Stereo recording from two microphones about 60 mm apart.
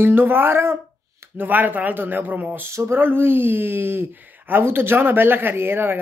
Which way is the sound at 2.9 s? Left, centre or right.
Right.